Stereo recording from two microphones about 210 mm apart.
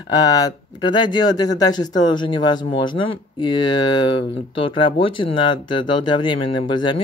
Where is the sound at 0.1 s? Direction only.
15° left (ahead or behind).